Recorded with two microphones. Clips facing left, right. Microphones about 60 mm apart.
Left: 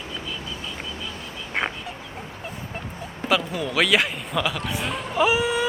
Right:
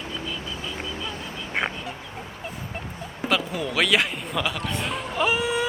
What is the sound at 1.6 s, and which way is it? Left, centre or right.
Fowl, centre.